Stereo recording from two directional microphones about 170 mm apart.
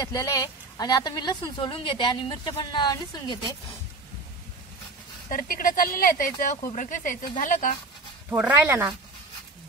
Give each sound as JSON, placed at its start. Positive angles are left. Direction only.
{"t": 0.0, "sound": "speech", "side_deg": 20}
{"t": 5.3, "sound": "speech", "side_deg": 55}
{"t": 8.3, "sound": "speech", "side_deg": -10}